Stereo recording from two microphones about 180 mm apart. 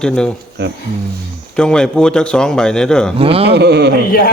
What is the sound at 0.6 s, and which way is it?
Speech, 70° right (ahead or behind).